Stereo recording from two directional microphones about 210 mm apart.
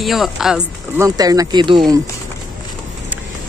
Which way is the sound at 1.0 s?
15° right (ahead or behind).